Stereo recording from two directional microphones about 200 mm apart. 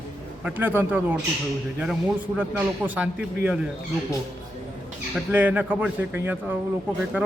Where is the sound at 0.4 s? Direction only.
10° right (ahead or behind).